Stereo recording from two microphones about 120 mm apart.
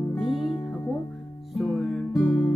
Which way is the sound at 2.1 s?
15° left (ahead or behind).